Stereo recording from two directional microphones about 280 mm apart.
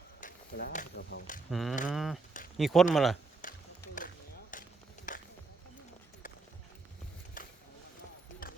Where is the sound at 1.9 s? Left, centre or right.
Centre.